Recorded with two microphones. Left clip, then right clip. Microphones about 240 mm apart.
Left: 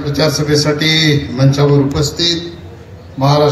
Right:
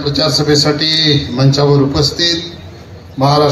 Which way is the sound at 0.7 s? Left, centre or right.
Centre.